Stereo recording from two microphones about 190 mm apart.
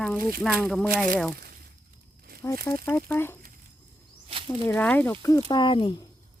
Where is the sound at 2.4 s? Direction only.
15° left (ahead or behind).